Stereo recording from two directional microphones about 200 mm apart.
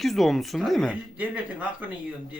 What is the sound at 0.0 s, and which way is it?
Speech, centre (ahead or behind).